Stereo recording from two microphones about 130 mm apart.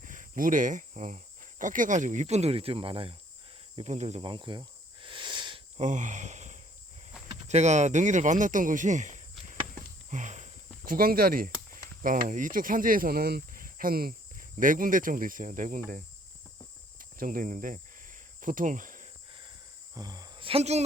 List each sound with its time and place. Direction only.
0.0 s speech: 90° right; by 3.2 s 45° right (ahead or behind)
3.8 s speech: 55° right (ahead or behind)
4.3 s cricket: 40° right (ahead or behind)
5.7 s speech: 70° right (ahead or behind)
9.7 s a sound: 70° right (ahead or behind)
10.8 s speech: 90° right
17.0 s speech: 90° right
19.9 s speech: 30° right (ahead or behind); by 20.8 s 55° right (ahead or behind)